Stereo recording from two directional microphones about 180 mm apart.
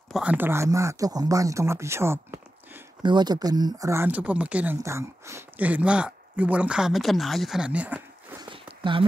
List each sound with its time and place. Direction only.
0.1 s speech: 5° right (ahead or behind)
3.0 s speech: 25° right (ahead or behind); by 8.4 s 10° right (ahead or behind)
8.4 s a sound: 25° right (ahead or behind)